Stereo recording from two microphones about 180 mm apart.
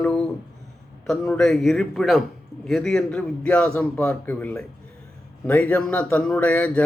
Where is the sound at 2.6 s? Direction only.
Centre (ahead or behind).